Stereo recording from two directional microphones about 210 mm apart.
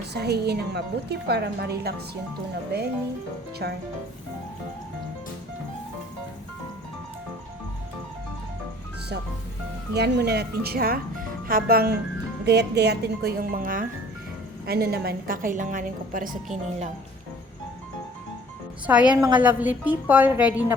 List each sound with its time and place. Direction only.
0.0 s speech: 50° right (ahead or behind)
9.9 s a woman's voice: 50° right (ahead or behind)
18.9 s a woman's voice: 5° right (ahead or behind)